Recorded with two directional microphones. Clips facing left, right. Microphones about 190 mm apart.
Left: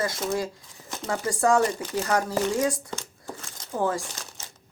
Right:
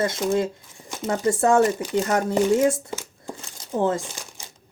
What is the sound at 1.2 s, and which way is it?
Speech, 25° right (ahead or behind).